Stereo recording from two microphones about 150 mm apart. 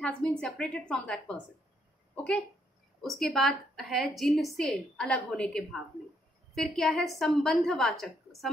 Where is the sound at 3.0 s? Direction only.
Centre (ahead or behind).